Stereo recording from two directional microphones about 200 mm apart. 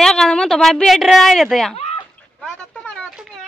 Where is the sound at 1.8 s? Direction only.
30° left (ahead or behind).